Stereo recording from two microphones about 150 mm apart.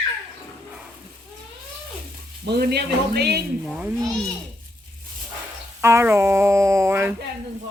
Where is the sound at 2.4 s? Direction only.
90° right.